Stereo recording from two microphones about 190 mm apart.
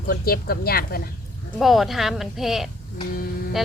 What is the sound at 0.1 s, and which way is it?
Speech, 50° left (ahead or behind).